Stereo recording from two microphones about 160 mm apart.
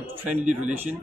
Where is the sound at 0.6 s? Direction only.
10° right (ahead or behind).